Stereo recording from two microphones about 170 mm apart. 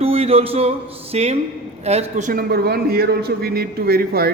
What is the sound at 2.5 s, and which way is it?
A man's voice, 65° right (ahead or behind).